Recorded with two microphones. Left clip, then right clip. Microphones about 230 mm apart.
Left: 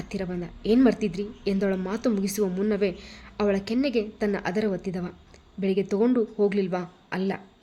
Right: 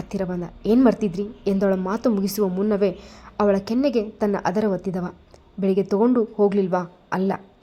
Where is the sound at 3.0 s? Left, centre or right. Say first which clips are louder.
Right 1 dB; right.